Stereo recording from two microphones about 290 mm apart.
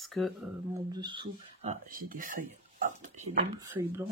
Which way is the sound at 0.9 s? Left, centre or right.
Centre.